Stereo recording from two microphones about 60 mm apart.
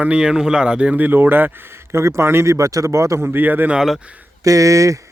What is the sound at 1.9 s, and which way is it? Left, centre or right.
Speech, right.